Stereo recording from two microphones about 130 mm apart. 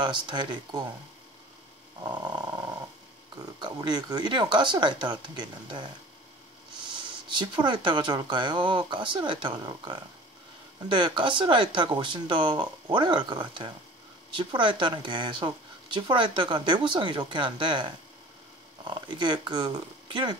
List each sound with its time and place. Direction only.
0.0 s speech: 35° right (ahead or behind)
2.0 s speech: 30° right (ahead or behind)
3.6 s speech: 35° right (ahead or behind)
7.2 s speech: 35° right (ahead or behind)